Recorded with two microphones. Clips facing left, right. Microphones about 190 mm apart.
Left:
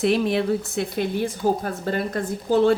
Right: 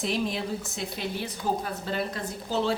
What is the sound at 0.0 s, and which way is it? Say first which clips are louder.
Speech: left 9 dB; 65° left (ahead or behind).